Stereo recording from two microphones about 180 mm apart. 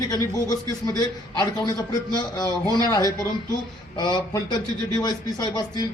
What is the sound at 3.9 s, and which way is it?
Speech, 25° left (ahead or behind).